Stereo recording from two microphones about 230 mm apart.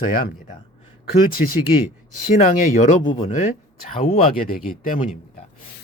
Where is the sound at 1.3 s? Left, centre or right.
Left.